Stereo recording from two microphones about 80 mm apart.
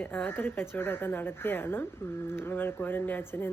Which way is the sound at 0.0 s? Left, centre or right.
Centre.